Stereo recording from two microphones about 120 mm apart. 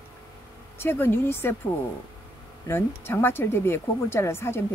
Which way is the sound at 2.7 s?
20° left (ahead or behind).